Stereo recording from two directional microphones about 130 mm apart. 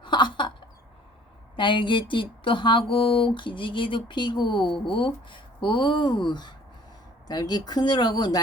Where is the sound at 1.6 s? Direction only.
40° left (ahead or behind).